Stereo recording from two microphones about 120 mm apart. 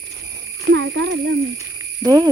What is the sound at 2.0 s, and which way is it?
Speech, 30° right (ahead or behind).